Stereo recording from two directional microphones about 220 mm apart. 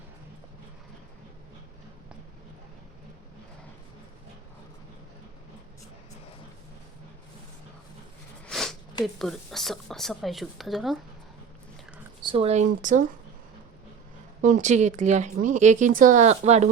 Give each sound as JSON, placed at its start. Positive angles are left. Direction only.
{"t": 8.4, "sound": "a sound", "side_deg": 0}
{"t": 9.1, "sound": "speech", "side_deg": 0}
{"t": 12.2, "sound": "speech", "side_deg": -25}
{"t": 14.4, "sound": "speech", "side_deg": -35}